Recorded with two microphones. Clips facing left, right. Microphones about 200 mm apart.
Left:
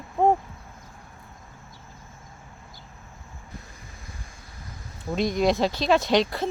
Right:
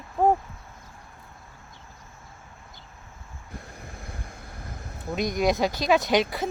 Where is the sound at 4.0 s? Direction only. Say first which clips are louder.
Right 5 dB; 60° right (ahead or behind).